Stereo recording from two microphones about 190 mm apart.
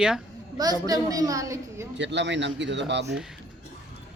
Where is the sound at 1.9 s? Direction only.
70° right (ahead or behind).